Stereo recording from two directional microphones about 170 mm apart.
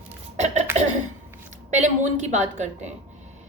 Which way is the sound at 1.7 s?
45° right (ahead or behind).